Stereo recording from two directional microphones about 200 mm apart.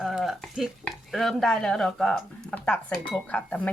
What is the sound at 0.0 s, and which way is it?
Speech, centre (ahead or behind).